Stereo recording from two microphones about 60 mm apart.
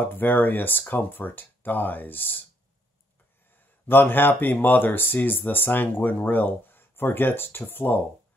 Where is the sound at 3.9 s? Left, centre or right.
Left.